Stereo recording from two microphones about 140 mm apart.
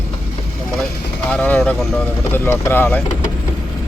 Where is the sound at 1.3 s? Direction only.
10° left (ahead or behind).